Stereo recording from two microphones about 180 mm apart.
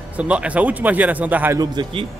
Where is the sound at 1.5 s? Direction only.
25° right (ahead or behind).